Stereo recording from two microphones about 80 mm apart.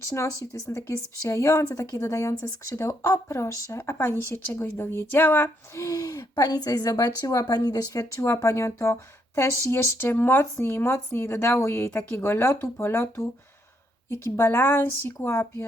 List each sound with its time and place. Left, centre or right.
0.7 s a woman's voice: left
5.7 s speech: left
8.2 s speech: left
14.3 s speech: left